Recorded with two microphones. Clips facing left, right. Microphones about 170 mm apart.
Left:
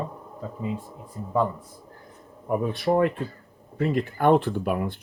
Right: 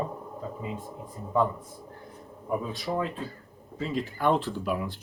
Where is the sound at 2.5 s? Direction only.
60° left (ahead or behind).